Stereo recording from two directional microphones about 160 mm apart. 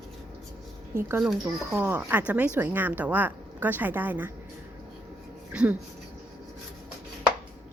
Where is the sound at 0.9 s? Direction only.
15° right (ahead or behind).